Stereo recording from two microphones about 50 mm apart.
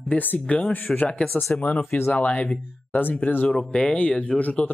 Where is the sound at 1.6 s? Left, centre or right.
Left.